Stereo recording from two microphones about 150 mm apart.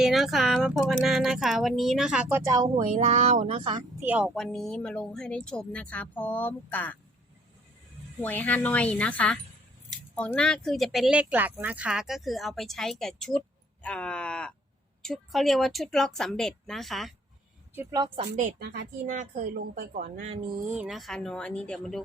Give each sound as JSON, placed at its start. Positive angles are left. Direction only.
{"t": 0.0, "sound": "speech", "side_deg": 0}
{"t": 2.5, "sound": "speech", "side_deg": -25}
{"t": 2.9, "sound": "speech", "side_deg": -50}
{"t": 4.0, "sound": "speech", "side_deg": -10}
{"t": 4.4, "sound": "speech", "side_deg": 5}
{"t": 8.2, "sound": "speech", "side_deg": 10}
{"t": 18.2, "sound": "a woman's voice", "side_deg": -55}
{"t": 18.6, "sound": "speech", "side_deg": -90}
{"t": 19.0, "sound": "a woman's voice", "side_deg": -55}
{"t": 20.2, "sound": "speech", "side_deg": -35}
{"t": 20.7, "sound": "speech", "side_deg": -5}